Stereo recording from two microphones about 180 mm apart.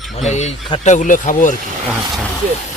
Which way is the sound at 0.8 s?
45° left (ahead or behind).